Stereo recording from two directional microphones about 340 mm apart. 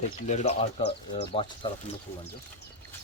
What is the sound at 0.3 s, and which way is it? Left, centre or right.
Speech, centre.